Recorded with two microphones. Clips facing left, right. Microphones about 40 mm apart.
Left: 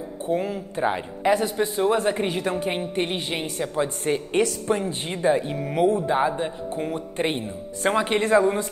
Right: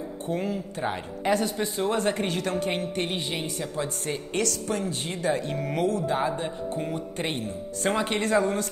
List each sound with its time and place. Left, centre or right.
0.5 s speech: left
5.5 s speech: centre
5.9 s speech: left